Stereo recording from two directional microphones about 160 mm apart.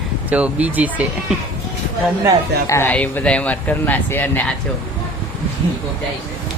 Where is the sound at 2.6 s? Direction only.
15° left (ahead or behind).